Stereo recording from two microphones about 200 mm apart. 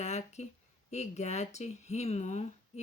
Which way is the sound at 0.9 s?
35° left (ahead or behind).